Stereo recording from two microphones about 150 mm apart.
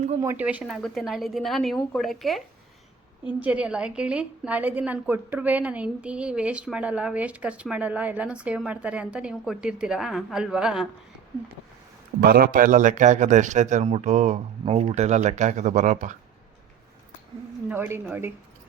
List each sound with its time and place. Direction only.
0.2 s speech: 20° right (ahead or behind)
0.4 s a woman's voice: 5° right (ahead or behind)
12.2 s a man's voice: 85° right; by 16.1 s 55° right (ahead or behind)
17.7 s a woman's voice: 15° right (ahead or behind)